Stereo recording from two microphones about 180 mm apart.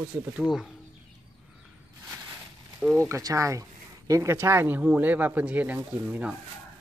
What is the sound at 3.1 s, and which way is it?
Speech, 15° right (ahead or behind).